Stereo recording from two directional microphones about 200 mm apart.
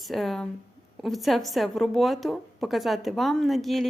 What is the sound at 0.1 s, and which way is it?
Speech, centre (ahead or behind).